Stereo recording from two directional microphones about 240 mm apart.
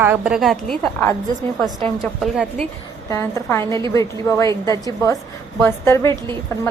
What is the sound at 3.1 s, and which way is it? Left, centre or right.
Speech, centre.